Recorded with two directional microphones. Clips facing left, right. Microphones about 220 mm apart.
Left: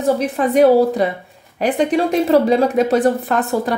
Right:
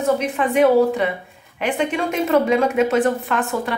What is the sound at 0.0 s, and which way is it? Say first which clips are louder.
A woman's voice: left 3 dB; 35° left (ahead or behind).